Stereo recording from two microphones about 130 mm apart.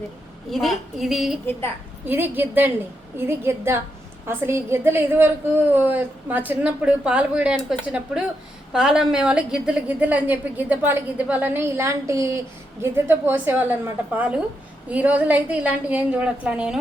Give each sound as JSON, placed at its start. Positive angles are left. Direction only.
{"t": 0.5, "sound": "a woman's voice", "side_deg": 0}
{"t": 2.0, "sound": "a woman's voice", "side_deg": -15}